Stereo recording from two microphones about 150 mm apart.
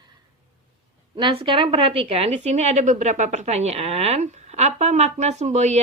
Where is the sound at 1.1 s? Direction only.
35° right (ahead or behind).